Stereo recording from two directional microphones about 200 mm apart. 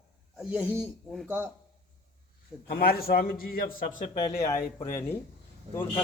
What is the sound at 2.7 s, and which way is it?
A man's voice, 50° left (ahead or behind).